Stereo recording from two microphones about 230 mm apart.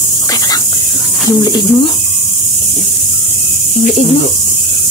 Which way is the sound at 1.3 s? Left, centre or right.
Centre.